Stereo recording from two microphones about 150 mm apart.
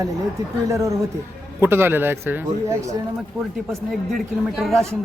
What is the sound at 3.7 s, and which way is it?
Speech, centre (ahead or behind).